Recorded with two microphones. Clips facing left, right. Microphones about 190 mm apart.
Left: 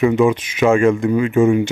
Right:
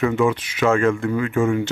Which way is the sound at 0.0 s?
15° left (ahead or behind).